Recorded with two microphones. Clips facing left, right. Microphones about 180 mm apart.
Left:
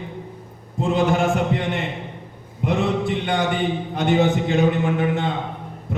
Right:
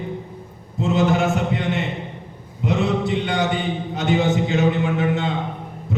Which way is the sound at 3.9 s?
55° left (ahead or behind).